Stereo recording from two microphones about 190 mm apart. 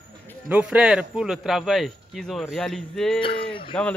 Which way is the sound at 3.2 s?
30° left (ahead or behind).